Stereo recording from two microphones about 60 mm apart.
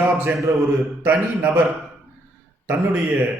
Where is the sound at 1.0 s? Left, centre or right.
Right.